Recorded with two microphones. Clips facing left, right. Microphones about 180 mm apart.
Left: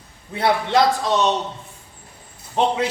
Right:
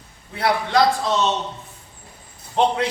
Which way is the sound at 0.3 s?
25° left (ahead or behind).